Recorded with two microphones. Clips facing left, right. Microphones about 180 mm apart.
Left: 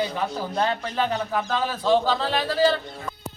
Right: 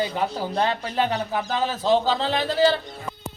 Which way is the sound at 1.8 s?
25° right (ahead or behind).